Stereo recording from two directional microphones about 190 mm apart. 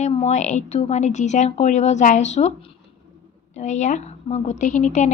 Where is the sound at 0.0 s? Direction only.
35° left (ahead or behind).